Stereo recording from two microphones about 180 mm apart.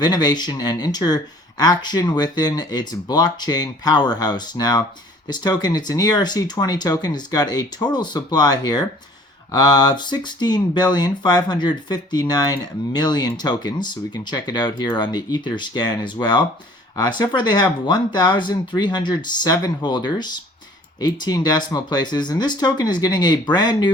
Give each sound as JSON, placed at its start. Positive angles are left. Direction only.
{"t": 0.0, "sound": "speech", "side_deg": 25}